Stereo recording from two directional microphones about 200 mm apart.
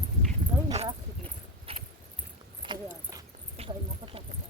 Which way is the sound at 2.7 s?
25° right (ahead or behind).